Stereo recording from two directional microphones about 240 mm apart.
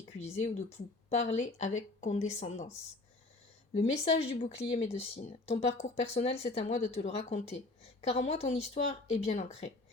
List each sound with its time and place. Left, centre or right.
0.3 s a woman's voice: left
4.0 s a woman's voice: left